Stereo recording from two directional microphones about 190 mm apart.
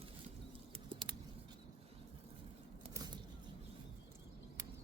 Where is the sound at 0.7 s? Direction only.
25° right (ahead or behind).